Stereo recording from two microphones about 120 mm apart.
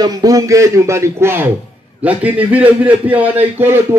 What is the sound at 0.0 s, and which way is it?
A man's voice, 30° right (ahead or behind).